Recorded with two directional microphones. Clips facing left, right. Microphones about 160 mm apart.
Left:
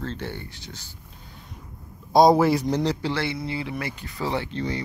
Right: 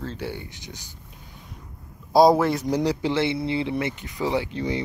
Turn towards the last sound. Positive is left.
turn(degrees=-15)  # may be behind; listen again after turning